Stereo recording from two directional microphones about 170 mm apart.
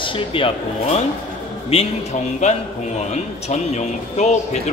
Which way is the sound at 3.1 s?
40° left (ahead or behind).